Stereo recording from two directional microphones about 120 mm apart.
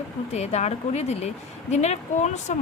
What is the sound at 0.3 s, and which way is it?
A woman's voice, 65° left (ahead or behind).